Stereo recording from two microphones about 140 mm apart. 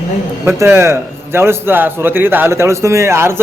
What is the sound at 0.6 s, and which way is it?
A man's voice, 20° right (ahead or behind).